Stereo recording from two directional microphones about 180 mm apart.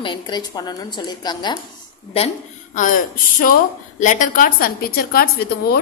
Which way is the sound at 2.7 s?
50° left (ahead or behind).